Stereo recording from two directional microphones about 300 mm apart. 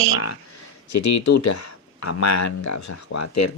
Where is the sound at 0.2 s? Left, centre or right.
Left.